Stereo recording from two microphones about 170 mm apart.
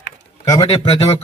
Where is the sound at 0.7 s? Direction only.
30° left (ahead or behind).